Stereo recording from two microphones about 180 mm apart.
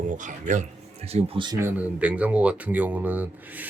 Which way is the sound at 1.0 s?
35° right (ahead or behind).